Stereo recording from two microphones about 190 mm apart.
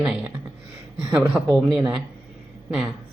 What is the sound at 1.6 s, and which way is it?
Speech, 5° right (ahead or behind).